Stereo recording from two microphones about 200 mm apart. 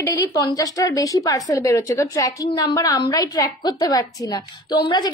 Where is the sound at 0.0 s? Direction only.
15° left (ahead or behind).